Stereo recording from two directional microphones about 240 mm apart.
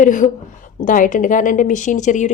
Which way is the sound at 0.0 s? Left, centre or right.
Left.